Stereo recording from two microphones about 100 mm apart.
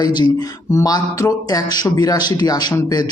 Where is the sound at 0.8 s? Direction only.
35° left (ahead or behind).